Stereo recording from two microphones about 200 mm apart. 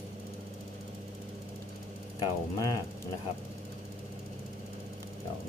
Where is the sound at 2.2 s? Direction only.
20° left (ahead or behind).